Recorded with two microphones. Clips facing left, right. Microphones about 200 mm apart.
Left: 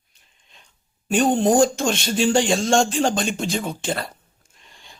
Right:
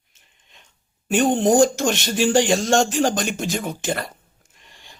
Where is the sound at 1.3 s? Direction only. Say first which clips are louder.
Right 1 dB; 20° right (ahead or behind).